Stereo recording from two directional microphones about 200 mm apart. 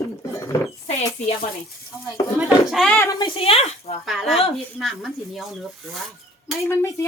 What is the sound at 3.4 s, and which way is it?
Speech, 30° left (ahead or behind).